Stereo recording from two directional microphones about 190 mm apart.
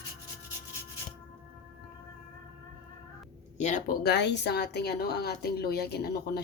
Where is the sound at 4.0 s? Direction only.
60° left (ahead or behind).